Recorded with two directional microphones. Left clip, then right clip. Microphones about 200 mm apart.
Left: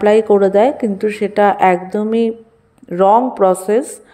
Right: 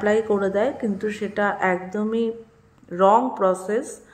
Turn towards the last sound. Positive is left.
turn(degrees=30)  # may be behind; listen again after turning